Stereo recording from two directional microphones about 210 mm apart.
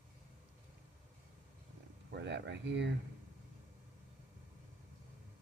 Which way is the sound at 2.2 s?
55° right (ahead or behind).